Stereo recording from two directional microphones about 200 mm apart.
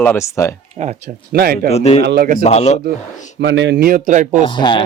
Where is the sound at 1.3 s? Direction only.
50° right (ahead or behind).